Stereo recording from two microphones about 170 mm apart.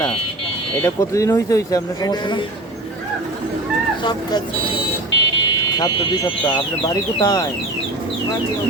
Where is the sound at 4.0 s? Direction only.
25° left (ahead or behind).